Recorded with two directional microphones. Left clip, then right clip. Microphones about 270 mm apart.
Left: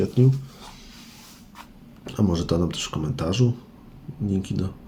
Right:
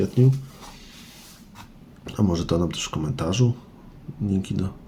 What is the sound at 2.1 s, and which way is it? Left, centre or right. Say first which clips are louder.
Speech: even; centre.